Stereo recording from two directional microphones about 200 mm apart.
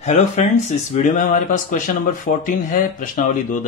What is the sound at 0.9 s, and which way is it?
Speech, 40° left (ahead or behind).